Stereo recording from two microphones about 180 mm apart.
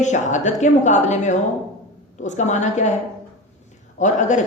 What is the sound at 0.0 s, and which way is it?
A woman's voice, 40° left (ahead or behind).